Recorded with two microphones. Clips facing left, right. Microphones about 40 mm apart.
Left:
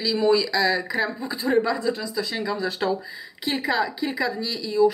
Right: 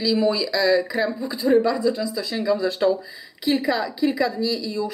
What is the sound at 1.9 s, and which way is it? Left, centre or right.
Speech, left.